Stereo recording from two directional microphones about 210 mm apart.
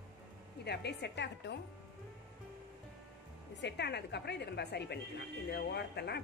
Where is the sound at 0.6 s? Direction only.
50° left (ahead or behind).